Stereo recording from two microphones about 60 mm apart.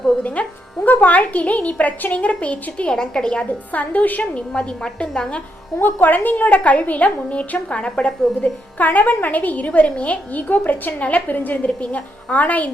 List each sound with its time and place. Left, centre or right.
0.2 s a woman's voice: left
2.9 s a woman's voice: centre; by 4.4 s left
4.5 s a woman's voice: centre
5.8 s a woman's voice: left